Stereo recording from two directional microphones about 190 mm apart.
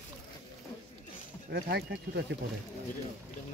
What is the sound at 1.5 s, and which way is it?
Speech, 55° right (ahead or behind).